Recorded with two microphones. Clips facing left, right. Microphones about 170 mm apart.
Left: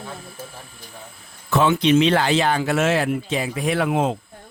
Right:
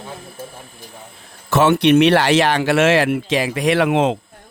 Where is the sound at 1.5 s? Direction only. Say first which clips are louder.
Right 4 dB; 70° right (ahead or behind); by 4.1 s 85° right.